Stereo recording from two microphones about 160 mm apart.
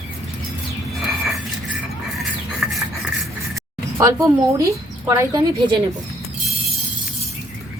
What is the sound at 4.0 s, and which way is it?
A woman's voice, 20° right (ahead or behind).